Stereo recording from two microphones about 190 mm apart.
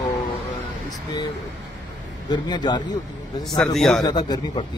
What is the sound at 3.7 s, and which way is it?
Speech, centre (ahead or behind).